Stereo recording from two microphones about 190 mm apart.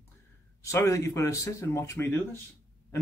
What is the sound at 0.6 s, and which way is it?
Speech, 15° left (ahead or behind).